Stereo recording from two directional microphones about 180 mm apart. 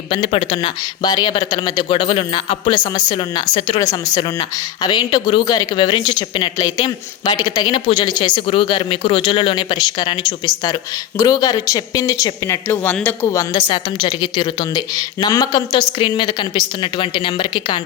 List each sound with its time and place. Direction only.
0.1 s speech: 30° left (ahead or behind)